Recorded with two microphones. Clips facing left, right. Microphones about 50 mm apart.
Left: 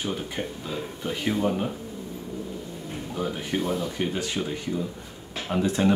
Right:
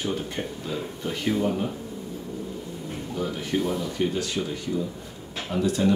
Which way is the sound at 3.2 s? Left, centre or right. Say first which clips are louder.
Right 1 dB; centre.